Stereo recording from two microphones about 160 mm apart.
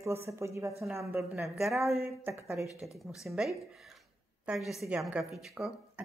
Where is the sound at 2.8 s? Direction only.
Centre (ahead or behind).